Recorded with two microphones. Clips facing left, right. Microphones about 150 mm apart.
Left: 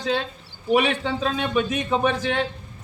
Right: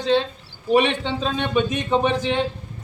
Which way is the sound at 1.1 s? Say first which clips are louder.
Even; 25° right (ahead or behind).